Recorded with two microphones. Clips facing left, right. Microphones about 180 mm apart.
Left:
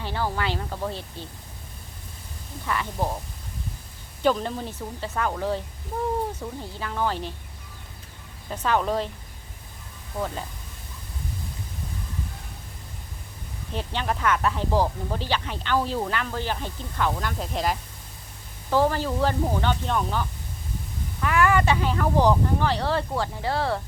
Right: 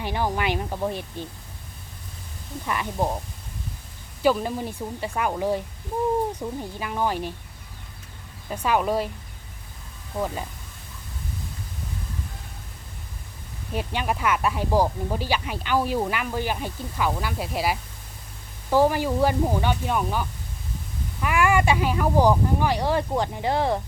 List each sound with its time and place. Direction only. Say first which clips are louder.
0.0 s speech: right 2 dB; 15° right (ahead or behind)
2.6 s speech: right 2 dB; 15° right (ahead or behind)
4.2 s speech: right 2 dB; 10° right (ahead or behind)
8.4 s speech: right 1 dB; 10° right (ahead or behind)
10.2 s speech: right 2 dB; 10° right (ahead or behind)
13.7 s speech: right 2 dB; 10° right (ahead or behind)